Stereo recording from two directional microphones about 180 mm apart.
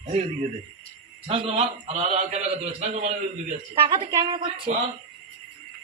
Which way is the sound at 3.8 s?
20° right (ahead or behind).